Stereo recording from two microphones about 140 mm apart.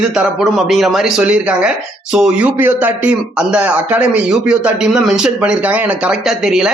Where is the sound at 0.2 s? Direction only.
5° right (ahead or behind).